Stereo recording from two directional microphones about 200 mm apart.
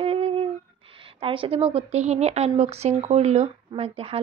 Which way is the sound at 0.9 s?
25° right (ahead or behind).